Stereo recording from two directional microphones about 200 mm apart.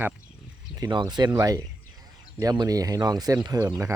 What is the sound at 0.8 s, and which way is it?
Speech, 20° right (ahead or behind).